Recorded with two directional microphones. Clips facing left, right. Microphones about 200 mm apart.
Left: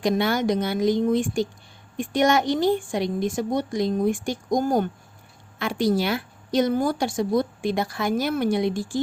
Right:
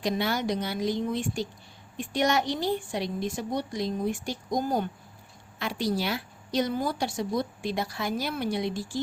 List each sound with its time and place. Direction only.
0.0 s a woman's voice: 55° left (ahead or behind)